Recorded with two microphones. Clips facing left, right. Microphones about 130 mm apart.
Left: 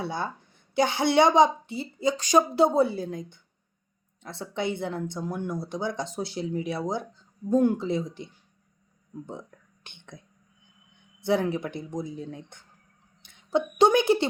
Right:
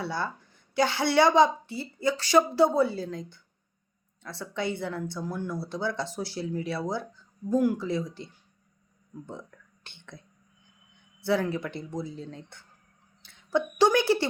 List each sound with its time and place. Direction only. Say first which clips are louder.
0.0 s a woman's voice: left 1 dB; 20° left (ahead or behind)
13.2 s a sound: right 1 dB; 20° left (ahead or behind)
13.7 s a woman's voice: left 2 dB; 20° left (ahead or behind)